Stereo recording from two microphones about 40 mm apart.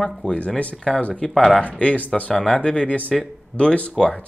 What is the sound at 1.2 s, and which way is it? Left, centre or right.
Speech, centre.